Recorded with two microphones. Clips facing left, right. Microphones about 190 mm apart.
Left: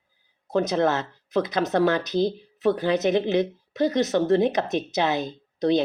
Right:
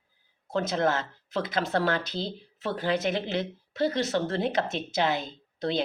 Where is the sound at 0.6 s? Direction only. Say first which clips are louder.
Left 4 dB; 20° left (ahead or behind).